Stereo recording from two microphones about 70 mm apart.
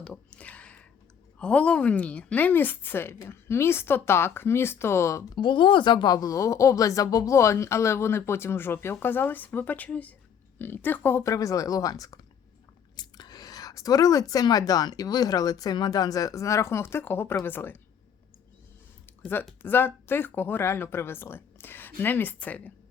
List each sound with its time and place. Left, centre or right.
0.0 s a sound: centre
1.4 s a woman's voice: centre; by 5.2 s left
5.9 s a woman's voice: left
11.2 s speech: left
13.0 s a woman's voice: left
19.6 s a woman's voice: left